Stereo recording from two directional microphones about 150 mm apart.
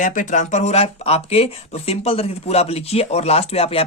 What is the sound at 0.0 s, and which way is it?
Speech, 60° left (ahead or behind).